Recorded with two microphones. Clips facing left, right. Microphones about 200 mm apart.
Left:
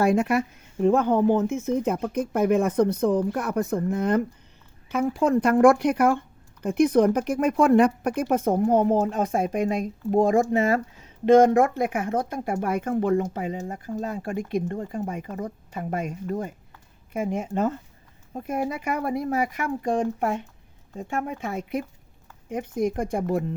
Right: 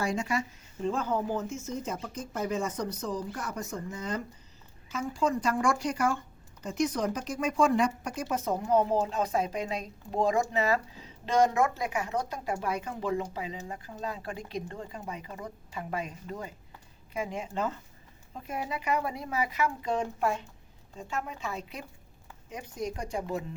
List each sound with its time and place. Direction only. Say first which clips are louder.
0.0 s speech: left 9 dB; 60° left (ahead or behind)